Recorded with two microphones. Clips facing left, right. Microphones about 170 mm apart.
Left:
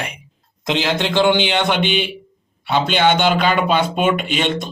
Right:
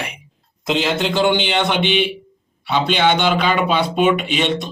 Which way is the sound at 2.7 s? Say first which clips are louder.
Left 1 dB; 45° left (ahead or behind).